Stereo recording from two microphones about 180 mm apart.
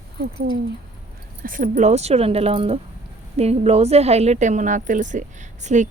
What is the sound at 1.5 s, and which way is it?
A woman's voice, 50° right (ahead or behind).